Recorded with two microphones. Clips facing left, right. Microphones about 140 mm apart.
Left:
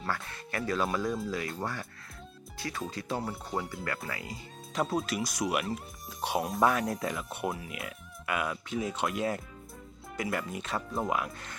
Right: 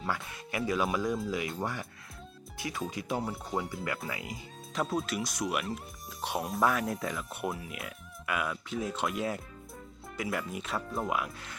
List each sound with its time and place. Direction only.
0.0 s speech: 15° right (ahead or behind)
3.2 s speech: centre (ahead or behind)
4.1 s speech: 15° right (ahead or behind)
4.7 s speech: centre (ahead or behind)